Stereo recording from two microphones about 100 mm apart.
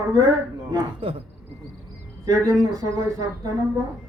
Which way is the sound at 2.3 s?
35° right (ahead or behind).